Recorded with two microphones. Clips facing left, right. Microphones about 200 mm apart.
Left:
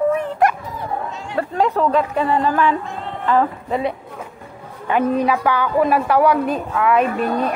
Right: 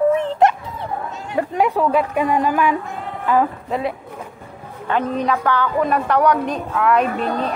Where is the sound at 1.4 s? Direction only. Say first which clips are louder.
Even; 15° right (ahead or behind).